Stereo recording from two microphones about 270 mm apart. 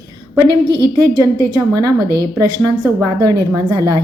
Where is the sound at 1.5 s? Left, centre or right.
Centre.